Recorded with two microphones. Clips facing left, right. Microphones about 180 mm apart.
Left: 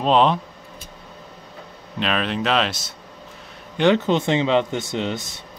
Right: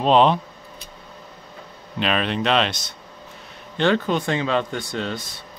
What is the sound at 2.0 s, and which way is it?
Speech, centre (ahead or behind).